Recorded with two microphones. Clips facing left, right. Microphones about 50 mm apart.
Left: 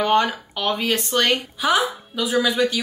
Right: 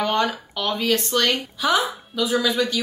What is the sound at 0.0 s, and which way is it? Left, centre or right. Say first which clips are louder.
A woman's voice: left 3 dB; centre.